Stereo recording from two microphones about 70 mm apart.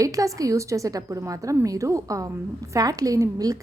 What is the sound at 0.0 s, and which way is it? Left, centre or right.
A woman's voice, right.